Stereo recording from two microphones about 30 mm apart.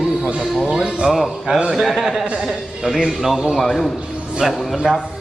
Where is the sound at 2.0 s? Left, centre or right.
Centre.